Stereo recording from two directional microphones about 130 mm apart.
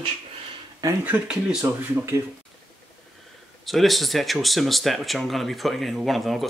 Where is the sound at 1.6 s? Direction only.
20° right (ahead or behind).